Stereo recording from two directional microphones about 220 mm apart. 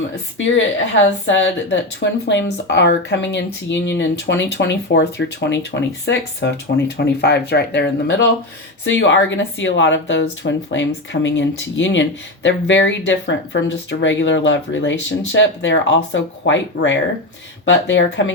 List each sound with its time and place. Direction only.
1.2 s speech: 55° left (ahead or behind)